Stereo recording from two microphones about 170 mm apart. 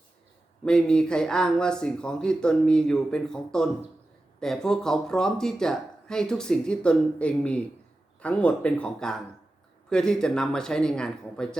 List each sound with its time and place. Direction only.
0.6 s speech: 5° left (ahead or behind)